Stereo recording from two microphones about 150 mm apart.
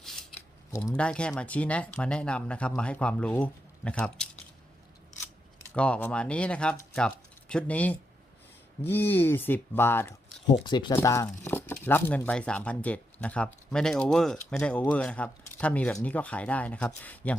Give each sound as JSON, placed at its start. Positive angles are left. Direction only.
{"t": 0.0, "sound": "scissors", "side_deg": 0}
{"t": 0.9, "sound": "speech", "side_deg": 5}
{"t": 5.6, "sound": "speech", "side_deg": 5}
{"t": 10.4, "sound": "speech", "side_deg": 30}